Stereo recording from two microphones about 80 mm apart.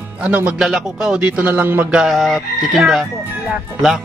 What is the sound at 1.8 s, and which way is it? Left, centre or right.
Speech, centre.